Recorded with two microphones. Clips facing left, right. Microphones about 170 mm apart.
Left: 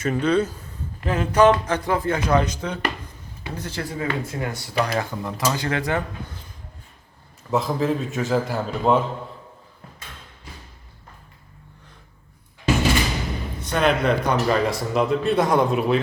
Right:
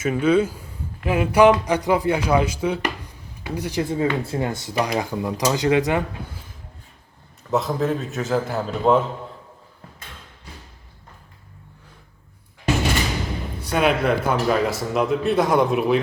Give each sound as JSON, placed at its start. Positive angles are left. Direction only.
{"t": 0.0, "sound": "a man's voice", "side_deg": -5}
{"t": 3.9, "sound": "a man's voice", "side_deg": -25}
{"t": 7.5, "sound": "a man's voice", "side_deg": 0}
{"t": 13.7, "sound": "a man's voice", "side_deg": -5}